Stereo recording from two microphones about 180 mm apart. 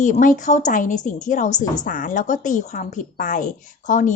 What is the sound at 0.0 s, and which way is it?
Speech, 45° left (ahead or behind).